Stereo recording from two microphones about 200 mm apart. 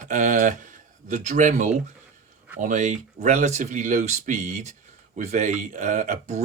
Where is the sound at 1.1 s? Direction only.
35° right (ahead or behind).